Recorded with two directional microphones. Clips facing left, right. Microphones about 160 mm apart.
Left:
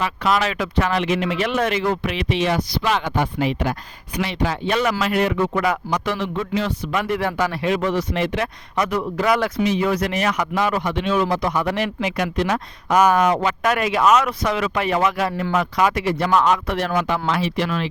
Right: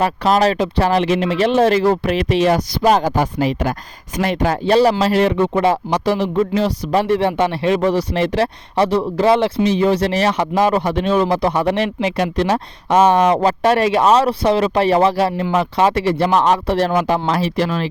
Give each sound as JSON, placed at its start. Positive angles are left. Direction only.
{"t": 0.0, "sound": "a man's voice", "side_deg": -40}
{"t": 4.6, "sound": "a man's voice", "side_deg": -35}